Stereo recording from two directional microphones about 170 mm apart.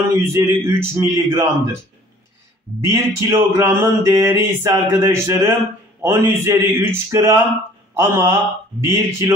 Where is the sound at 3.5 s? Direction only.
15° right (ahead or behind).